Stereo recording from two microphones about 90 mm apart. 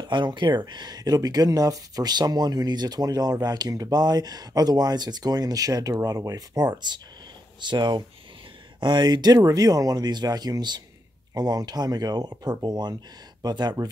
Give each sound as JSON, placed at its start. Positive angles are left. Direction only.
{"t": 0.1, "sound": "speech", "side_deg": -60}